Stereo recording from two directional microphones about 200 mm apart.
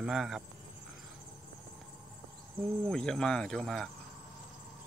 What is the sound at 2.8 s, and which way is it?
Speech, 5° left (ahead or behind).